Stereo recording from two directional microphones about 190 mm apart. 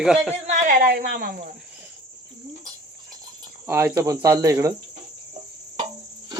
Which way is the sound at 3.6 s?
10° right (ahead or behind).